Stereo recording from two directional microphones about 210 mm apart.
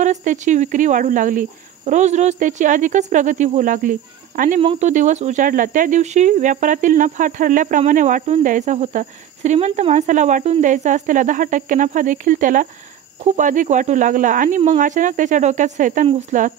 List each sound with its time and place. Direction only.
0.0 s speech: 35° right (ahead or behind)